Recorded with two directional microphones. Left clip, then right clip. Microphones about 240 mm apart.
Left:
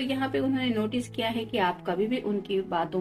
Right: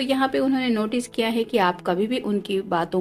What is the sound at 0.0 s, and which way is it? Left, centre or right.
A woman's voice, right.